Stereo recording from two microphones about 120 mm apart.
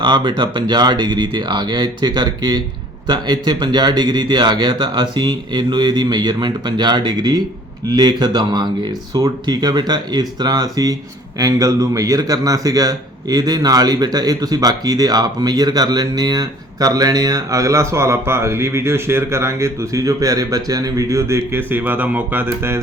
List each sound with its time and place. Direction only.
0.0 s a man's voice: 40° right (ahead or behind); by 22.8 s 20° right (ahead or behind)